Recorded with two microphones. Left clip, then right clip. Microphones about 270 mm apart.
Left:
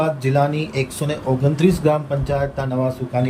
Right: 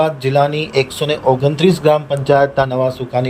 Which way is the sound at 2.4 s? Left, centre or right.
Right.